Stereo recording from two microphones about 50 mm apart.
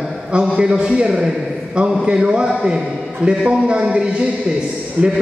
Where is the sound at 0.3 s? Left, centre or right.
Centre.